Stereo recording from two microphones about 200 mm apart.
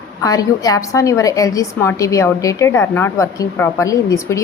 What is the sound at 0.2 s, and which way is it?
A woman's voice, 20° left (ahead or behind).